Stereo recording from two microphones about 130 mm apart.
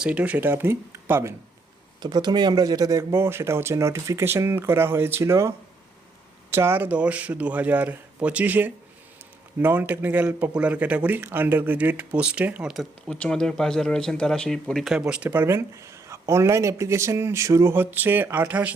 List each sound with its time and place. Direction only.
0.0 s speech: 10° right (ahead or behind)
2.0 s speech: 35° right (ahead or behind); by 18.7 s 10° right (ahead or behind)